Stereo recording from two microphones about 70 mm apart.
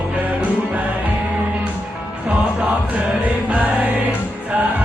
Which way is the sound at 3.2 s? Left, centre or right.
Right.